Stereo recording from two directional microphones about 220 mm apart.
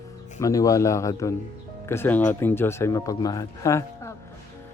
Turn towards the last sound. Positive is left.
turn(degrees=15)  # may be behind; listen again after turning